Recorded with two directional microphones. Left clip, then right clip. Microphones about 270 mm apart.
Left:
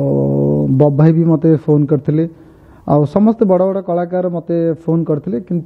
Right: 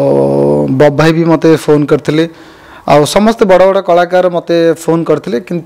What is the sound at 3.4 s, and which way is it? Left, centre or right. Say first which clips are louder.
Speech: right 8 dB; right.